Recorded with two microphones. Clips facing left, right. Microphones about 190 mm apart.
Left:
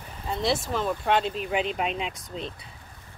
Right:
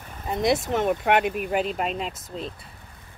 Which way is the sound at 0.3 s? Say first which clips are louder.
Right 4 dB; 20° right (ahead or behind).